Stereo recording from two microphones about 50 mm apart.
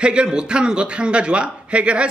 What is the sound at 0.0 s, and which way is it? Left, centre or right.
A man's voice, centre.